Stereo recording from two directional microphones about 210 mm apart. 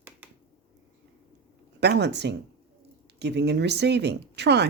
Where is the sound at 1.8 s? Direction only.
55° right (ahead or behind).